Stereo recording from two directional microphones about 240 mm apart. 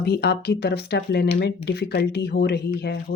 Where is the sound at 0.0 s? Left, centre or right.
Left.